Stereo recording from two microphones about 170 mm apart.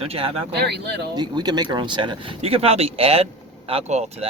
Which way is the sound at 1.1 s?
25° right (ahead or behind).